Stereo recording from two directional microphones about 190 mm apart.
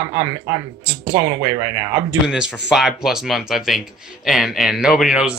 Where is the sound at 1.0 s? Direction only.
20° right (ahead or behind).